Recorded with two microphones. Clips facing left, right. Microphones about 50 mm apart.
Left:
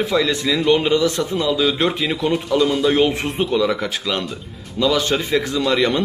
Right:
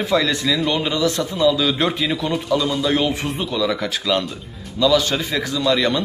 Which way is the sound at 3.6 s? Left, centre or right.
Centre.